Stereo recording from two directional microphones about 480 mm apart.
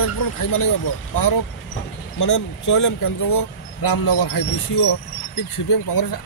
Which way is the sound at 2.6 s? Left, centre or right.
Left.